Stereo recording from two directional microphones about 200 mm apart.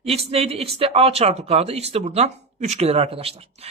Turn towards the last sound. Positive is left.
turn(degrees=-30)  # may be behind; listen again after turning